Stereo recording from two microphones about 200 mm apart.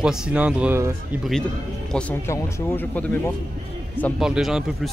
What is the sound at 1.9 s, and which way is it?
Speech, 10° left (ahead or behind).